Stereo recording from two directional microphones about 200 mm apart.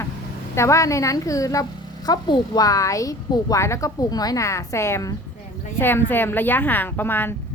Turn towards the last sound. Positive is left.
turn(degrees=10)  # may be behind; listen again after turning